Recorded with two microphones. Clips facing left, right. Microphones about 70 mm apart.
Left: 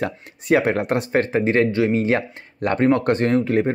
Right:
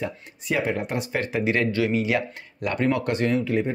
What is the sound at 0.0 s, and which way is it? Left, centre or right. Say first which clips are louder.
Speech: left 5 dB; left.